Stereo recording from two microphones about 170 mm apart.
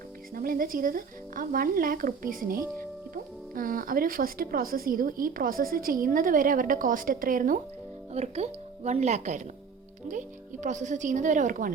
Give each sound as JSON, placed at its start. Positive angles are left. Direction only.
{"t": 0.3, "sound": "speech", "side_deg": -60}
{"t": 8.1, "sound": "speech", "side_deg": -40}